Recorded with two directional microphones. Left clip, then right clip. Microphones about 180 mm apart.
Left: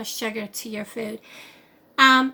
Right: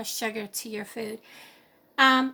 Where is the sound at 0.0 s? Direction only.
40° right (ahead or behind).